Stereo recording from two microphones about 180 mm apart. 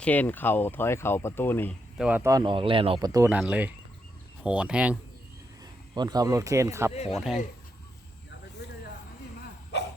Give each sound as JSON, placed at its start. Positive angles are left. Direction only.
{"t": 0.0, "sound": "speech", "side_deg": 10}
{"t": 2.0, "sound": "speech", "side_deg": -10}
{"t": 3.2, "sound": "speech", "side_deg": -5}
{"t": 5.9, "sound": "speech", "side_deg": -20}
{"t": 7.1, "sound": "speech", "side_deg": 0}